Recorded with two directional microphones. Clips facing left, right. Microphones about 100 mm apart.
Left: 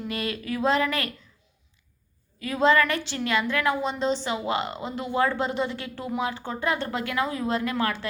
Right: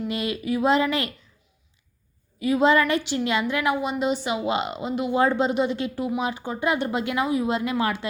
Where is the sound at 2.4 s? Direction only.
15° right (ahead or behind).